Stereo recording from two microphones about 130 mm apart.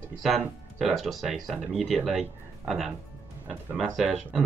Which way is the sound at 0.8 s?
Centre (ahead or behind).